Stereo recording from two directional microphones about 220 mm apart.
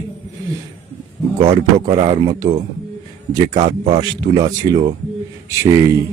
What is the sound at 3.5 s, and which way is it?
Speech, 20° right (ahead or behind).